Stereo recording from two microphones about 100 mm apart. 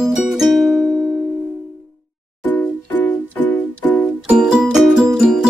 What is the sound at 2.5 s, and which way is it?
Music, 15° left (ahead or behind).